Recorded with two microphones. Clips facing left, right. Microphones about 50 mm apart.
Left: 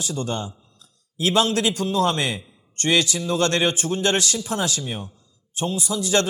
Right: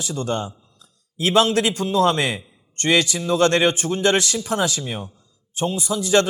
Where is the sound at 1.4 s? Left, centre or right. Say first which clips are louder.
Right 2 dB; right.